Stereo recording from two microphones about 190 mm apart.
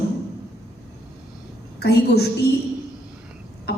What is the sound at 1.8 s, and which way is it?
Speech, 60° left (ahead or behind).